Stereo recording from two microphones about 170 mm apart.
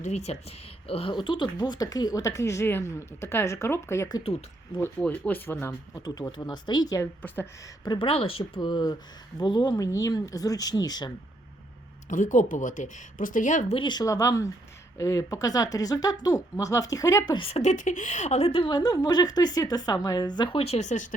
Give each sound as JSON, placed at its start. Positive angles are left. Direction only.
{"t": 0.0, "sound": "speech", "side_deg": 40}
{"t": 6.1, "sound": "speech", "side_deg": 25}
{"t": 7.9, "sound": "speech", "side_deg": 30}
{"t": 12.0, "sound": "speech", "side_deg": 50}
{"t": 13.7, "sound": "speech", "side_deg": 25}